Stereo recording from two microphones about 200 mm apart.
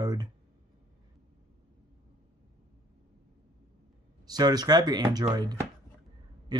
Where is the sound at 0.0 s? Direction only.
20° right (ahead or behind).